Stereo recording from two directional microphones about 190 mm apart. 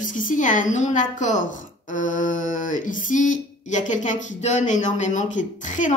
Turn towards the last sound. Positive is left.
turn(degrees=40)  # may be behind; listen again after turning